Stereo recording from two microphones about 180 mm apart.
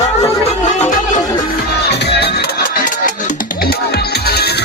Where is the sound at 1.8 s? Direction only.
70° left (ahead or behind).